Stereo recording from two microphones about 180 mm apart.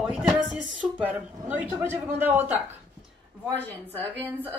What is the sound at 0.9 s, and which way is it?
A man's voice, 10° right (ahead or behind).